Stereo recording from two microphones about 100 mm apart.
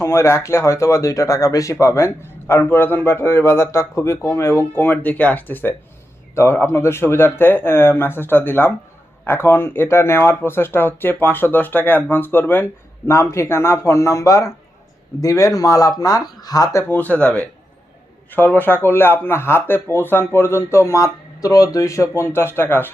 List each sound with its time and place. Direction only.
0.0 s speech: 25° left (ahead or behind)
16.9 s speech: 15° left (ahead or behind)